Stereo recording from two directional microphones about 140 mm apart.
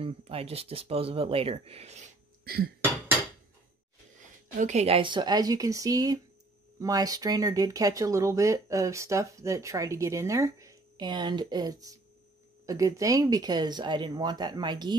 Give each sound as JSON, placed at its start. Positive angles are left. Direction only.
{"t": 0.0, "sound": "speech", "side_deg": -45}
{"t": 2.4, "sound": "cough", "side_deg": -90}
{"t": 4.6, "sound": "speech", "side_deg": -55}